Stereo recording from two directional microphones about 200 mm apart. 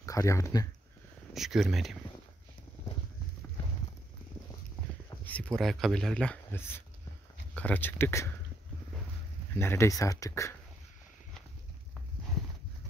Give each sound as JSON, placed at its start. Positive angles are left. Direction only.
{"t": 0.0, "sound": "speech", "side_deg": 15}
{"t": 1.3, "sound": "speech", "side_deg": 0}
{"t": 5.2, "sound": "speech", "side_deg": 5}
{"t": 9.6, "sound": "speech", "side_deg": 10}